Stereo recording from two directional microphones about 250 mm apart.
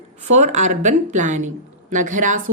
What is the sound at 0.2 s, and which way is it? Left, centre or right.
A woman's voice, right.